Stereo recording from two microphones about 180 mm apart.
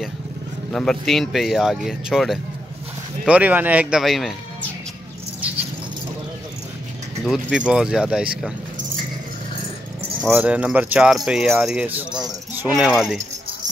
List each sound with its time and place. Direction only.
0.7 s speech: centre (ahead or behind)
7.2 s speech: 5° right (ahead or behind)
10.3 s speech: 5° right (ahead or behind)
12.1 s speech: 25° right (ahead or behind)
12.5 s speech: 5° right (ahead or behind)